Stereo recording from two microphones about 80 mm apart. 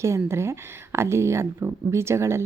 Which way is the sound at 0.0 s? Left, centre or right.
Right.